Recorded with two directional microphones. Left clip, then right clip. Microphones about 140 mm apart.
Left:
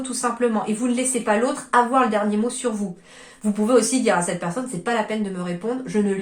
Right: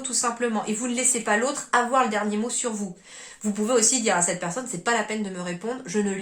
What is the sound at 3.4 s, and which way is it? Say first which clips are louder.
A woman's voice: left 4 dB; 20° right (ahead or behind).